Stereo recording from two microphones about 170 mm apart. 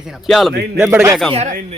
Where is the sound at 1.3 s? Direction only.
40° right (ahead or behind).